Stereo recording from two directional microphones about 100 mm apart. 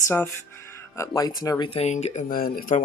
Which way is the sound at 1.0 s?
35° left (ahead or behind).